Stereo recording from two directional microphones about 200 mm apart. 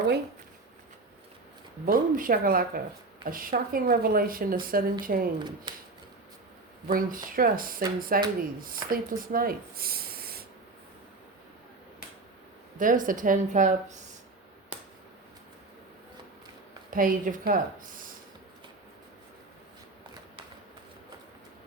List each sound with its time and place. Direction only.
1.8 s a woman's voice: 45° right (ahead or behind)
6.8 s a woman's voice: 45° right (ahead or behind)
12.8 s a woman's voice: 40° right (ahead or behind)
16.9 s a woman's voice: 45° right (ahead or behind)